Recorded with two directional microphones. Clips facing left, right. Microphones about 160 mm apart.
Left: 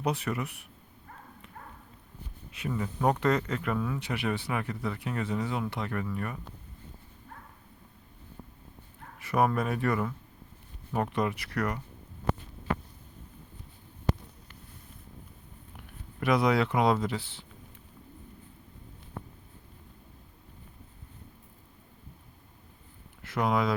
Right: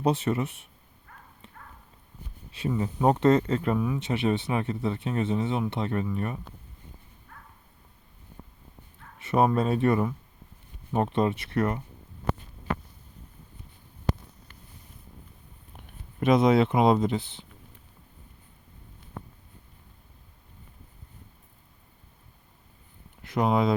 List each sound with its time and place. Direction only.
0.0 s speech: 25° right (ahead or behind)
2.5 s speech: 25° right (ahead or behind)
3.8 s speech: 15° right (ahead or behind)
9.1 s speech: 25° right (ahead or behind)
16.2 s speech: 25° right (ahead or behind)
23.2 s speech: 20° right (ahead or behind)